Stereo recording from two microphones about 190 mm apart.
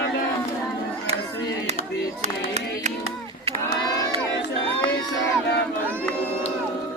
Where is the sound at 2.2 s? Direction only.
35° right (ahead or behind).